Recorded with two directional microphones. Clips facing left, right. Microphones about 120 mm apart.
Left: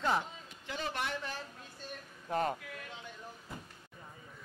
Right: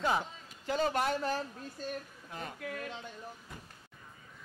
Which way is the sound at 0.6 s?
40° right (ahead or behind).